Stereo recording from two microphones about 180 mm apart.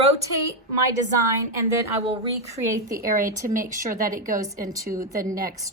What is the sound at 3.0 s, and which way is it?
A woman's voice, 50° right (ahead or behind).